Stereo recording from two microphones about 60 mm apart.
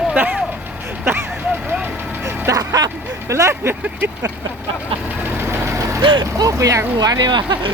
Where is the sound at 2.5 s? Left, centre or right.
Right.